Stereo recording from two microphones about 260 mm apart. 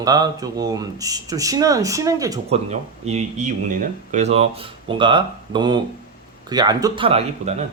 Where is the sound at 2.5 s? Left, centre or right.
Right.